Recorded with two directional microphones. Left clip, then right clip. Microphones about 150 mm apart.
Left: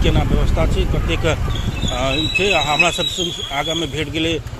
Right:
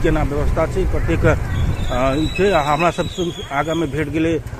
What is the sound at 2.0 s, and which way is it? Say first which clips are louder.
Speech: even; 45° right (ahead or behind).